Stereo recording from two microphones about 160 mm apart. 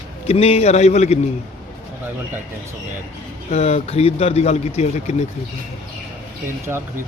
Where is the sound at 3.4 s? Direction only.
45° left (ahead or behind).